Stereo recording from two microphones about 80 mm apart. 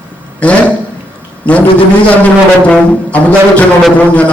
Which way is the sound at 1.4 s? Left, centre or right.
Centre.